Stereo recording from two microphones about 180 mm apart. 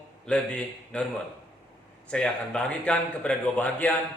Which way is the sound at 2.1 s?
5° left (ahead or behind).